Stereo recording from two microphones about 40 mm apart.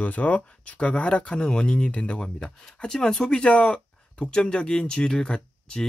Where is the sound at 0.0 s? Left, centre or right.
Left.